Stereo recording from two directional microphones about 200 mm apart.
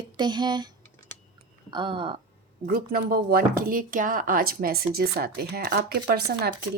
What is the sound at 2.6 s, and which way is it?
Speech, 45° right (ahead or behind).